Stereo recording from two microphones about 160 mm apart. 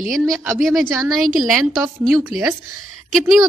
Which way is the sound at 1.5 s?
Centre (ahead or behind).